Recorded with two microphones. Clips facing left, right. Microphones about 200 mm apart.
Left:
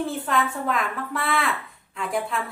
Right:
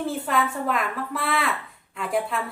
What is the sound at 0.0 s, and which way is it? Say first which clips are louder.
Speech: even; 5° right (ahead or behind).